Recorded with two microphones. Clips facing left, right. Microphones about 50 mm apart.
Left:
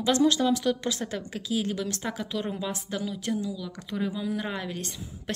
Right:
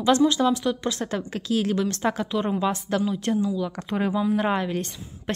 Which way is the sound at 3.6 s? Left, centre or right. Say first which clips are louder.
Right 6 dB; right.